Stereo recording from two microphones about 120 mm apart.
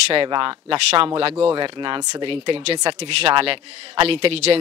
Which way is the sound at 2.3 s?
50° right (ahead or behind).